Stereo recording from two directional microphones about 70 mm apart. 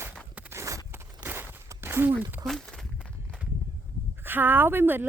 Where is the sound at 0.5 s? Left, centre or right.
Right.